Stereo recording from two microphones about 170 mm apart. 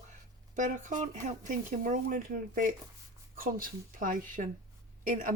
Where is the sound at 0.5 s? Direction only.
45° right (ahead or behind).